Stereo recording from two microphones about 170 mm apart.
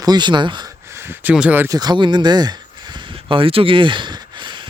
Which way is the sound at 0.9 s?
15° right (ahead or behind).